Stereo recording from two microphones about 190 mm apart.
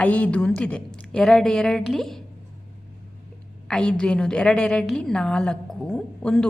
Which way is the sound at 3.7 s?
5° left (ahead or behind).